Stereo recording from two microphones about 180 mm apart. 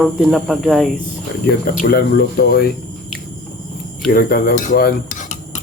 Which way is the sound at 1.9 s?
60° left (ahead or behind).